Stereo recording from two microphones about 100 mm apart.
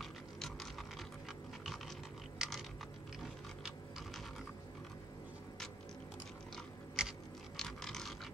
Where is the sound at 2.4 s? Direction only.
5° right (ahead or behind).